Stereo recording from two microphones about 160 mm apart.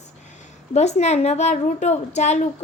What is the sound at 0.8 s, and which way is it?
Speech, 45° left (ahead or behind).